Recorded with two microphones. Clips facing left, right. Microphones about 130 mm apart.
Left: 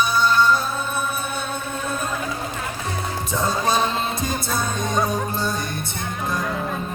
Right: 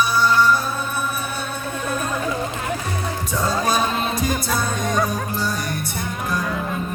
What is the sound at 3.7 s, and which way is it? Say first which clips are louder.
Music: even; 25° left (ahead or behind).